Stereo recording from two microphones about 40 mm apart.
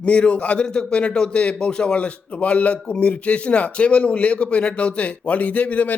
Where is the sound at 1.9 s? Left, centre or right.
Left.